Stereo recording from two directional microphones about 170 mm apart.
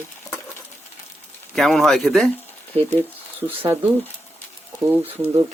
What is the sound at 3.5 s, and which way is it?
Speech, 10° right (ahead or behind).